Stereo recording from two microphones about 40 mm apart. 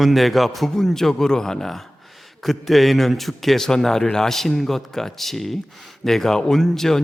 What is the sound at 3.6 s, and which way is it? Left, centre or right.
Speech, centre.